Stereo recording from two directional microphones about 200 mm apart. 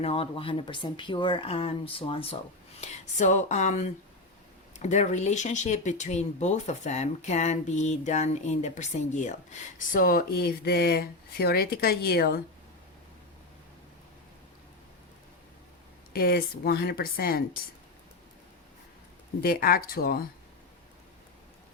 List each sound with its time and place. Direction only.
0.0 s speech: 25° left (ahead or behind); by 12.4 s 50° left (ahead or behind)
16.1 s a woman's voice: 50° left (ahead or behind)
19.4 s a woman's voice: 50° left (ahead or behind)